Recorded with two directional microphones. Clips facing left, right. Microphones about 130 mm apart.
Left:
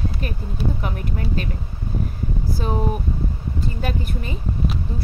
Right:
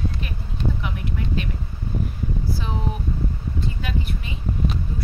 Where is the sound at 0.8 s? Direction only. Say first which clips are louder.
Left 2 dB; 45° left (ahead or behind).